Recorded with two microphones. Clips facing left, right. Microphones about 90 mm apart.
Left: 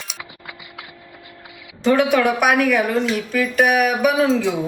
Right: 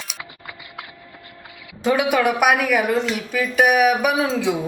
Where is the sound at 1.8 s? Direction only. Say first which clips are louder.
Left 2 dB; 5° right (ahead or behind).